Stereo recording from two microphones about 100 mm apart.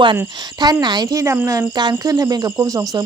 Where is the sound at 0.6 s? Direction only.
45° right (ahead or behind).